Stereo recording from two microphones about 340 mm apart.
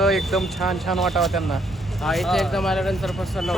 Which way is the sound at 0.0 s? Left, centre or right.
Centre.